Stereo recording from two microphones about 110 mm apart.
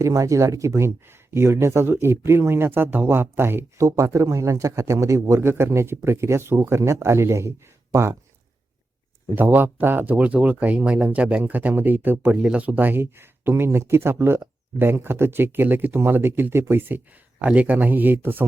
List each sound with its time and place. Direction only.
0.0 s speech: 30° right (ahead or behind)
9.3 s speech: 20° right (ahead or behind)